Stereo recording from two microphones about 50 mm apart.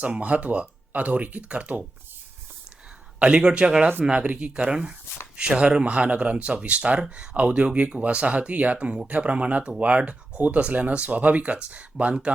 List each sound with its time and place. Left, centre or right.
0.0 s speech: right
3.2 s speech: centre